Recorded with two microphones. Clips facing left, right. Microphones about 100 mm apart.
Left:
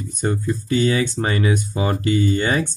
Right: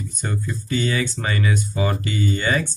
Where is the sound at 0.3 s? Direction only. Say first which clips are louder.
Left 4 dB; 35° left (ahead or behind).